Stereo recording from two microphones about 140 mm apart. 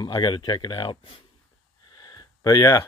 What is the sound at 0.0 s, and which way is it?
Speech, 30° left (ahead or behind).